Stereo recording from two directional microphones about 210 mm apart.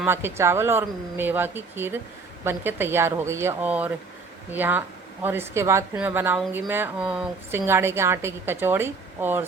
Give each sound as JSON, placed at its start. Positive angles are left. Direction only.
{"t": 0.0, "sound": "a woman's voice", "side_deg": -10}